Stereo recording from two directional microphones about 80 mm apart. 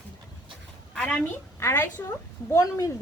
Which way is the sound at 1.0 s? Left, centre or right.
Centre.